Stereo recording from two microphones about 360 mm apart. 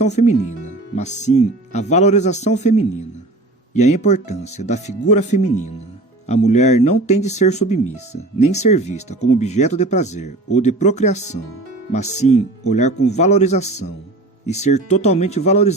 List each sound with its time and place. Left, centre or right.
0.0 s speech: centre